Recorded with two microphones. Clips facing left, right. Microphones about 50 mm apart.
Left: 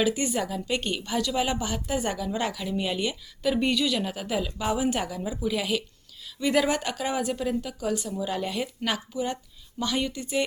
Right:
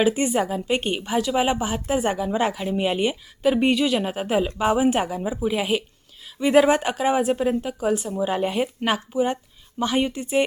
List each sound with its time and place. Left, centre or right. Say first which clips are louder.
0.0 s a woman's voice: right 5 dB; right